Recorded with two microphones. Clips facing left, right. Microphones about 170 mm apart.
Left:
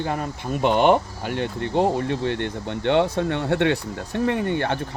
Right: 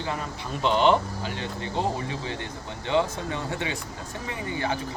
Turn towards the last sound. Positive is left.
turn(degrees=65)  # may be behind; listen again after turning